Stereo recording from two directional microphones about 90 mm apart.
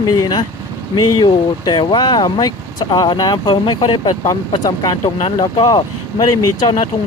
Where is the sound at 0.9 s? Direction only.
55° left (ahead or behind).